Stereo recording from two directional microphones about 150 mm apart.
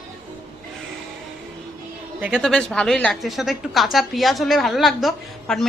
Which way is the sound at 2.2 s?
10° right (ahead or behind).